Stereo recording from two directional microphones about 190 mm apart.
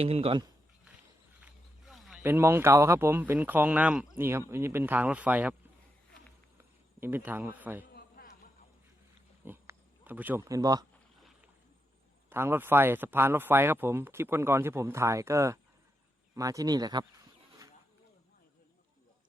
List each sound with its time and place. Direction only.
0.0 s speech: 30° right (ahead or behind)
1.4 s wild animals: centre (ahead or behind)
2.2 s speech: 10° right (ahead or behind)
6.6 s a man's voice: 10° right (ahead or behind)
7.9 s a sound: 50° left (ahead or behind)
9.4 s pig: 10° right (ahead or behind)
12.3 s speech: 10° right (ahead or behind)